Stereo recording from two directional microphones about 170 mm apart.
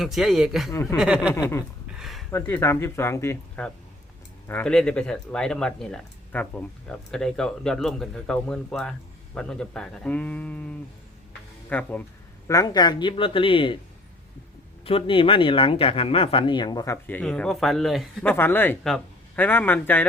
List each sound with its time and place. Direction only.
0.0 s speech: centre (ahead or behind)
0.7 s speech: 15° left (ahead or behind)
0.9 s speech: 5° right (ahead or behind)
1.3 s speech: 15° left (ahead or behind)
2.0 s a sound: centre (ahead or behind)
2.3 s speech: 15° left (ahead or behind)
12.5 s speech: 20° left (ahead or behind)
14.8 s speech: 30° left (ahead or behind); by 20.1 s 10° left (ahead or behind)